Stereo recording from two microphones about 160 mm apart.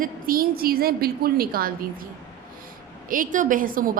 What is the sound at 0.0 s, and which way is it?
A woman's voice, 65° right (ahead or behind).